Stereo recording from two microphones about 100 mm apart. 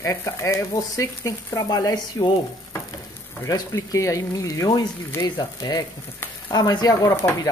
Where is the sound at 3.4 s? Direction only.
35° left (ahead or behind).